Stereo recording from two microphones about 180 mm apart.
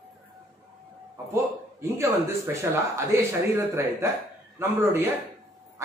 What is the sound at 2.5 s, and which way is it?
Speech, 15° right (ahead or behind).